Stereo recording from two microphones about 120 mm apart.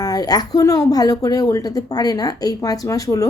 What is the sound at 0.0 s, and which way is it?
A woman's voice, 30° left (ahead or behind).